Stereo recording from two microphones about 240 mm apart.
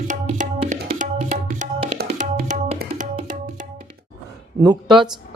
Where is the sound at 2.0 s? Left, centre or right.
Right.